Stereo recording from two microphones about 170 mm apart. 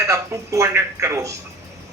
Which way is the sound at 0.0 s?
20° right (ahead or behind).